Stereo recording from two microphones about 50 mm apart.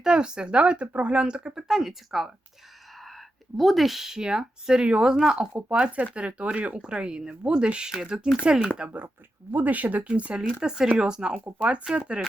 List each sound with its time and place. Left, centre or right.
0.0 s speech: centre
3.6 s speech: centre
5.7 s speech: right
9.5 s speech: right; by 11.3 s centre
11.4 s speech: right